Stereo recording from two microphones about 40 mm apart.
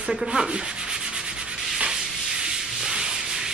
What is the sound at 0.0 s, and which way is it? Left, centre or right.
Sanding, right.